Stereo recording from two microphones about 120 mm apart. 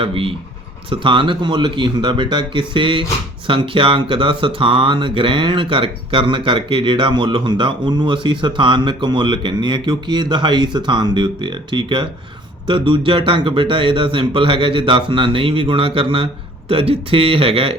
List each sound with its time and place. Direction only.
0.0 s speech: 50° right (ahead or behind)